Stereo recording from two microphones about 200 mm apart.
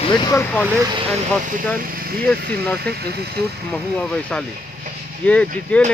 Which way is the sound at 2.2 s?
5° left (ahead or behind).